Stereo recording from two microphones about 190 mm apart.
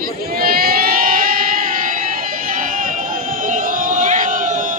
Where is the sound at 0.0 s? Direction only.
50° right (ahead or behind).